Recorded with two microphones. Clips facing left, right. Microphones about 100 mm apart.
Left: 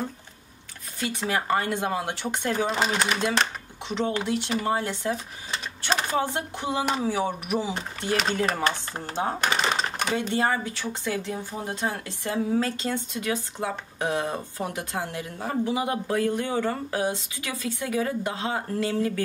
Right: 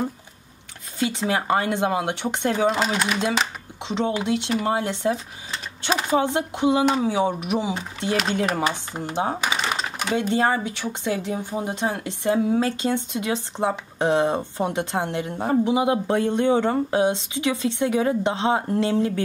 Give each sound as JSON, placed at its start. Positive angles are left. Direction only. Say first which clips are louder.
{"t": 0.9, "sound": "speech", "louder": "right 4 dB", "side_deg": -20}
{"t": 2.7, "sound": "speech", "louder": "right 2 dB", "side_deg": 0}
{"t": 3.8, "sound": "speech", "louder": "right 3 dB", "side_deg": -20}
{"t": 5.5, "sound": "typing", "louder": "right 2 dB", "side_deg": -5}
{"t": 6.1, "sound": "speech", "louder": "right 5 dB", "side_deg": -20}
{"t": 10.2, "sound": "speech", "louder": "right 6 dB", "side_deg": -15}